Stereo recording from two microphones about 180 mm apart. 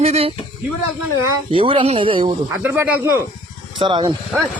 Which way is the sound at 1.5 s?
30° right (ahead or behind).